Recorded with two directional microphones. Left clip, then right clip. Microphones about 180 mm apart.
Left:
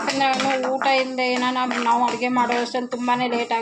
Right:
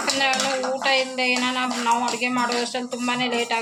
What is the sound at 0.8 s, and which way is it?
Speech, 20° left (ahead or behind).